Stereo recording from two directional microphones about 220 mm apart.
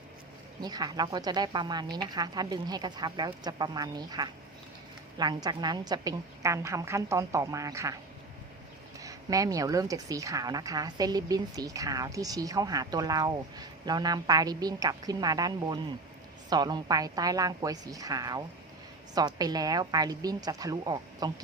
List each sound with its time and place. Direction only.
0.6 s speech: 20° right (ahead or behind)
9.0 s speech: 15° right (ahead or behind)